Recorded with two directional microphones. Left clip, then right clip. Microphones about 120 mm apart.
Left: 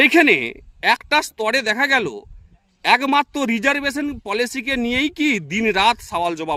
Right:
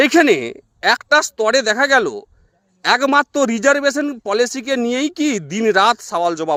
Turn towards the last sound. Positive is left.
turn(degrees=20)  # may be behind; listen again after turning